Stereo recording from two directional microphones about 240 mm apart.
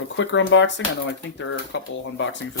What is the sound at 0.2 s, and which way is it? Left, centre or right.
Speech, left.